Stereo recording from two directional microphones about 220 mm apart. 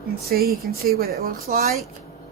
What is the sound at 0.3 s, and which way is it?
Speech, 45° right (ahead or behind).